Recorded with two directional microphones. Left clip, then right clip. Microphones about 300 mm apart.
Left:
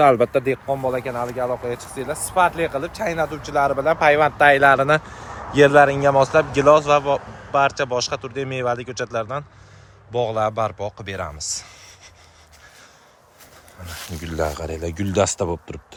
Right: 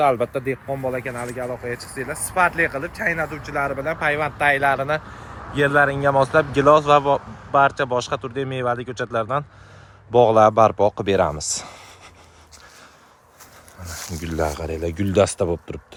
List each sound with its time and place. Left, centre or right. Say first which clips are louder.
0.0 s speech: left 4 dB; left
0.4 s speech: left 3 dB; centre; by 5.4 s left
5.4 s speech: left 5 dB; centre
13.8 s speech: right 1 dB; centre